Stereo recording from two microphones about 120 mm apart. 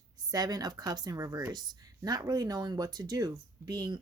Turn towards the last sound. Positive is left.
turn(degrees=-35)  # may be behind; listen again after turning